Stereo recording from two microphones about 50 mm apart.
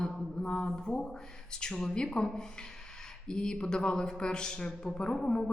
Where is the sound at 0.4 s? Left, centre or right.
Centre.